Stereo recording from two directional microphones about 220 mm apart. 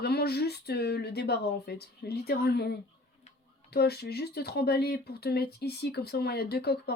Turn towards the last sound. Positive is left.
turn(degrees=45)  # may be behind; listen again after turning